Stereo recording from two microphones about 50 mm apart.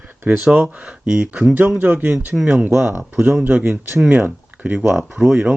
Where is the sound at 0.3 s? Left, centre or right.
Centre.